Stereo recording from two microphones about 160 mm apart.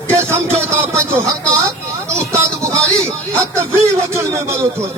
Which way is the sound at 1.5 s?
20° right (ahead or behind).